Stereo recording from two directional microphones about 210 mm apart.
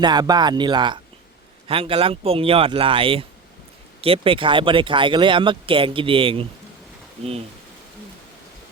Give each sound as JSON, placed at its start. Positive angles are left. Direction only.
{"t": 0.0, "sound": "speech", "side_deg": -20}